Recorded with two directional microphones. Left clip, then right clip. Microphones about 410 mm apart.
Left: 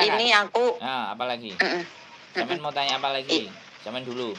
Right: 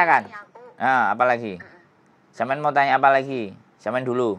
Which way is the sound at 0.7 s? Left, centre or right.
Right.